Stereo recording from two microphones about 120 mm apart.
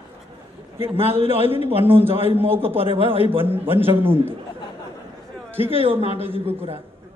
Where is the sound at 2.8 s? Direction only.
50° right (ahead or behind).